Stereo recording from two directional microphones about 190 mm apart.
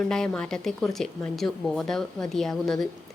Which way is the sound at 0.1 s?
5° left (ahead or behind).